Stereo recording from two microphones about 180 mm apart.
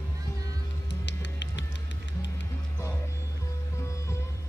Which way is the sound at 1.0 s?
75° left (ahead or behind).